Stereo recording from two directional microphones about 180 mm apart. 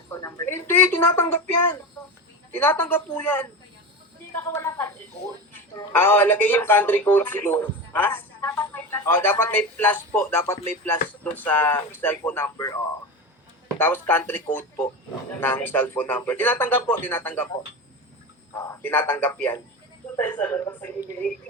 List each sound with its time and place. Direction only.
0.1 s a woman's voice: 15° left (ahead or behind)